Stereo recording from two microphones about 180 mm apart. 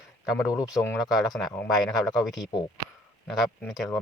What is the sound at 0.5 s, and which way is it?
Speech, 20° left (ahead or behind).